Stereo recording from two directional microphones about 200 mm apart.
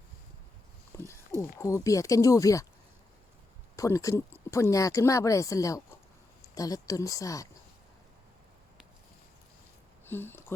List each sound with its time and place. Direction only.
0.9 s pig: 15° left (ahead or behind)
1.5 s a woman's voice: 15° left (ahead or behind)
3.8 s a woman's voice: 15° left (ahead or behind)
10.1 s speech: 10° left (ahead or behind)